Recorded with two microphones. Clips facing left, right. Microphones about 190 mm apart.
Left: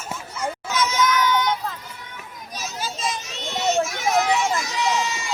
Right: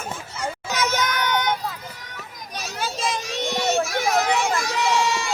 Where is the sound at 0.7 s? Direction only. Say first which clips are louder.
Left 3 dB; 65° right (ahead or behind).